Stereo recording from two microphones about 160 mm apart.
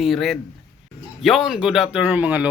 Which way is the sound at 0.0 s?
Centre (ahead or behind).